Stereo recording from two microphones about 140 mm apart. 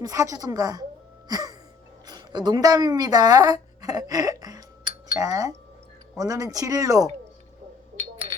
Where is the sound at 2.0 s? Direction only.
30° right (ahead or behind).